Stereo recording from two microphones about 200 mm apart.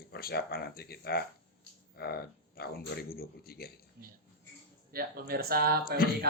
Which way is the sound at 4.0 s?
50° right (ahead or behind).